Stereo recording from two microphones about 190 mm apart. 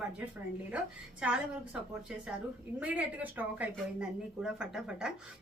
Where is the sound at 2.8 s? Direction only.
5° right (ahead or behind).